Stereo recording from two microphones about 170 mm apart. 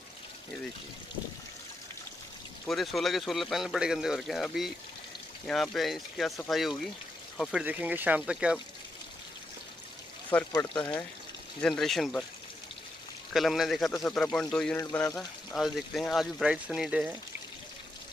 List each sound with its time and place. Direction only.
2.7 s speech: centre (ahead or behind)
7.6 s speech: 10° right (ahead or behind)
10.5 s speech: 25° left (ahead or behind)
11.6 s speech: centre (ahead or behind)
13.3 s speech: centre (ahead or behind)